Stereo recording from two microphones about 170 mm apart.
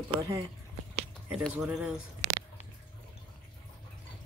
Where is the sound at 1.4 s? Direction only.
Centre (ahead or behind).